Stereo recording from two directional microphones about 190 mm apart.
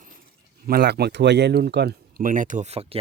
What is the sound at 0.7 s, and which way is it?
Speech, 55° right (ahead or behind).